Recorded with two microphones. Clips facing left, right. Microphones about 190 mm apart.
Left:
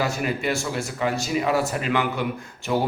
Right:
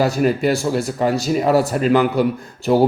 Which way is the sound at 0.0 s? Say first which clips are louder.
Right 8 dB; 40° right (ahead or behind).